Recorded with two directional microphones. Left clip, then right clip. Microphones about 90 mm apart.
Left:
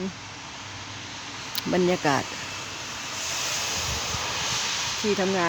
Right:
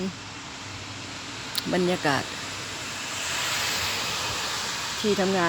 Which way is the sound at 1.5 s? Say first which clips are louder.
Left 2 dB; 75° left (ahead or behind).